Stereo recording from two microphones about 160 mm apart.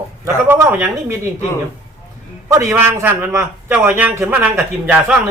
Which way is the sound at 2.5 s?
15° right (ahead or behind).